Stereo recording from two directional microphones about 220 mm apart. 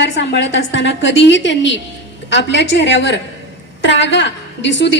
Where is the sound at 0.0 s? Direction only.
50° left (ahead or behind).